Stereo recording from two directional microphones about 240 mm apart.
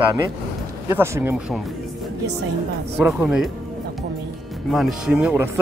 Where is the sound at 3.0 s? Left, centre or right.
Centre.